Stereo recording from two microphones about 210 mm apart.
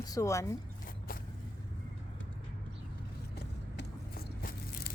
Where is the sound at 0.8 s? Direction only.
40° left (ahead or behind).